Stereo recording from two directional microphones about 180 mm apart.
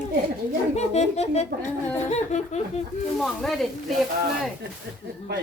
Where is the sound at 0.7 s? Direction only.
40° left (ahead or behind).